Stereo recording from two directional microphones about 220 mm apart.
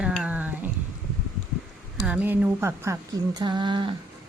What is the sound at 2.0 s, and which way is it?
A woman's voice, 5° right (ahead or behind).